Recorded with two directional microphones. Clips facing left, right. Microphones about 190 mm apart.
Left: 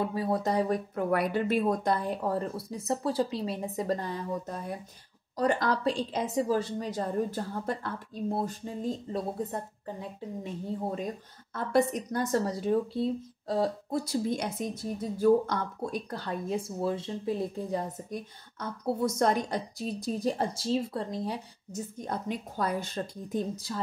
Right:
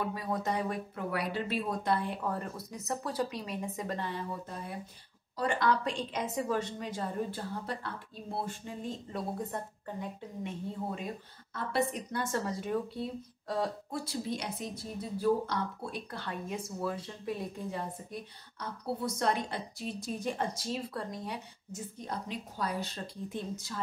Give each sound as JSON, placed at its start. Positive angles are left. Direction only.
{"t": 0.0, "sound": "a woman's voice", "side_deg": 30}
{"t": 11.5, "sound": "a woman's voice", "side_deg": 45}
{"t": 21.9, "sound": "a woman's voice", "side_deg": 50}